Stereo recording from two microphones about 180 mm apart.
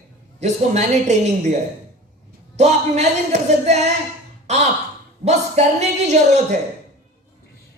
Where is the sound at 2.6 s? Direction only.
40° right (ahead or behind).